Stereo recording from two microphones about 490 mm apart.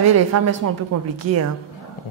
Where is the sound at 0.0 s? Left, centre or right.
Right.